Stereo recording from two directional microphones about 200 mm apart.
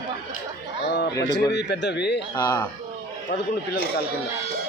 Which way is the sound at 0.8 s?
55° left (ahead or behind).